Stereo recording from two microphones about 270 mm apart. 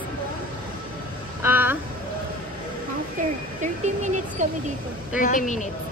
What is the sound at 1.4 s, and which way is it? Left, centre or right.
Speech, centre.